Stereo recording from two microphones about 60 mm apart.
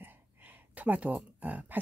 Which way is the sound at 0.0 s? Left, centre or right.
Right.